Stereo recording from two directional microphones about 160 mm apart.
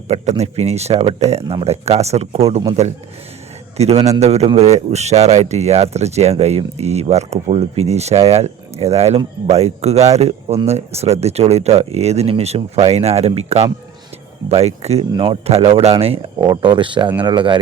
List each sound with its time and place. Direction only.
0.1 s speech: 40° right (ahead or behind)
3.8 s speech: 40° right (ahead or behind)